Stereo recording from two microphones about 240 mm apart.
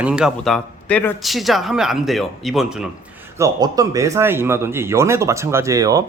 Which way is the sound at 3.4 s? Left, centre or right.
Centre.